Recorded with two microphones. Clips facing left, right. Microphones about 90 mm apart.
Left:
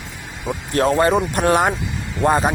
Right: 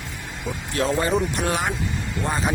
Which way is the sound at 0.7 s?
55° left (ahead or behind).